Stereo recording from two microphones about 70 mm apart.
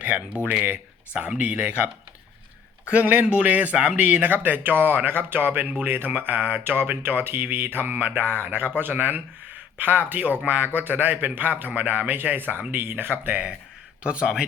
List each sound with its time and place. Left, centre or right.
0.6 s speech: right
2.9 s speech: right
14.0 s speech: centre